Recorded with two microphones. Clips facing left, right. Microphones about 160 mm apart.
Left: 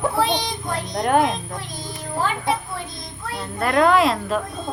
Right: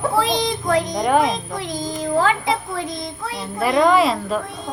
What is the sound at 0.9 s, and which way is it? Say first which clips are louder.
Speech: left 4 dB; centre (ahead or behind).